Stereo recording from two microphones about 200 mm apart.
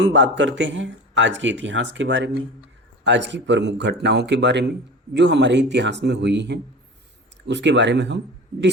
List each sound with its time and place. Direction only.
0.0 s speech: 65° right (ahead or behind)